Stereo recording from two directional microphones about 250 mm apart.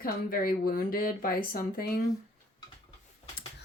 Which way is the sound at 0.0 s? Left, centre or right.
Left.